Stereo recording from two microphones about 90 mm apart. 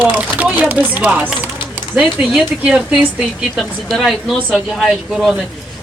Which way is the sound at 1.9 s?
5° right (ahead or behind).